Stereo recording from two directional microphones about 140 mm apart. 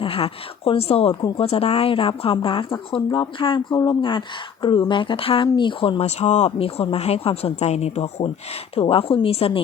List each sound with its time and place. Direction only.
0.0 s speech: 40° left (ahead or behind)
6.0 s speech: 50° left (ahead or behind)